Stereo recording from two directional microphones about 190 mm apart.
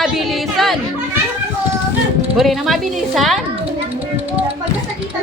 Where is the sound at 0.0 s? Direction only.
Centre (ahead or behind).